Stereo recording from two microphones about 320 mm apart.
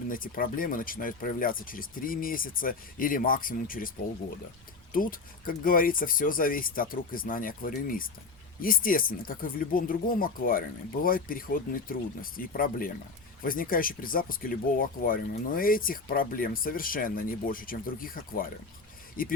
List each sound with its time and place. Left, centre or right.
0.1 s speech: left